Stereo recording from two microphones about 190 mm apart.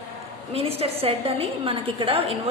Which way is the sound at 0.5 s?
30° right (ahead or behind).